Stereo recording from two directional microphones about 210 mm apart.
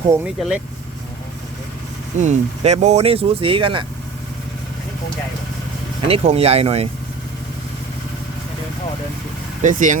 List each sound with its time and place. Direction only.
0.1 s speech: 5° right (ahead or behind)
2.1 s speech: 35° right (ahead or behind)
6.1 s speech: 30° right (ahead or behind)
9.6 s speech: 40° right (ahead or behind)